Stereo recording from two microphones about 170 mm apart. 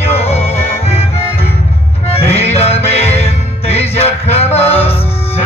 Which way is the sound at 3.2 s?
35° left (ahead or behind).